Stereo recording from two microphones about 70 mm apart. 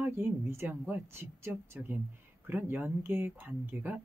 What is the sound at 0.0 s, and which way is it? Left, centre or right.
Speech, right.